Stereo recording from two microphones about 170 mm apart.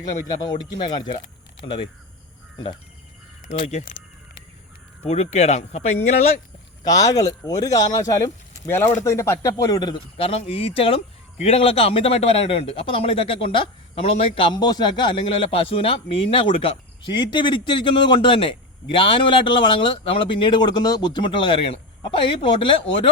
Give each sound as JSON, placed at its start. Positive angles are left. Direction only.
{"t": 0.4, "sound": "speech", "side_deg": 25}
{"t": 3.6, "sound": "speech", "side_deg": 45}
{"t": 5.0, "sound": "speech", "side_deg": 40}
{"t": 6.8, "sound": "speech", "side_deg": 20}